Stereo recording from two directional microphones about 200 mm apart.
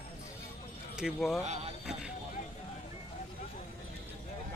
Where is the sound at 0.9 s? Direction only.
Centre (ahead or behind).